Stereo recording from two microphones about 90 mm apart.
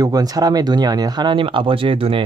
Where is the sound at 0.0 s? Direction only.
45° right (ahead or behind).